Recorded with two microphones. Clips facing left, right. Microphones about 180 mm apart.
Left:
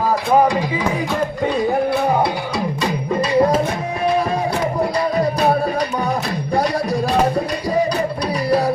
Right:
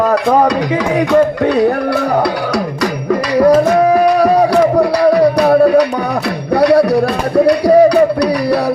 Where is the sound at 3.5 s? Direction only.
75° right (ahead or behind).